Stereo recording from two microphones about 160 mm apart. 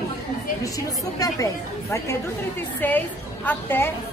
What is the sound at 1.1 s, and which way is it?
A woman's voice, 20° left (ahead or behind).